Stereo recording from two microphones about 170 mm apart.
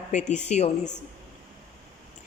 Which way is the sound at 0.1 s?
45° left (ahead or behind).